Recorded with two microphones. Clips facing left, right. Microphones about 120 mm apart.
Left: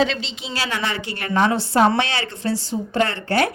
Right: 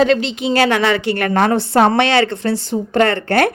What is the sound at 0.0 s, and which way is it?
Speech, 55° right (ahead or behind).